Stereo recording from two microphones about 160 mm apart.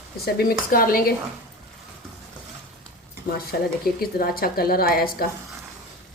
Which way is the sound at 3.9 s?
65° left (ahead or behind).